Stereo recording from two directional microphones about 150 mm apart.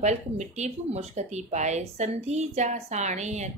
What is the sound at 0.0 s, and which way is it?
A woman's voice, 50° right (ahead or behind).